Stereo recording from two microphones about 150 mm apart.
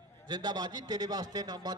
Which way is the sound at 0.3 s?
25° right (ahead or behind).